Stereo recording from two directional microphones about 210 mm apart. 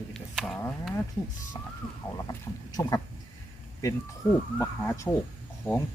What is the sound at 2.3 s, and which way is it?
Speech, 15° left (ahead or behind).